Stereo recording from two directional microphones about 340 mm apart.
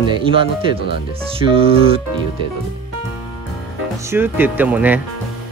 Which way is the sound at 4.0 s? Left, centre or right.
Centre.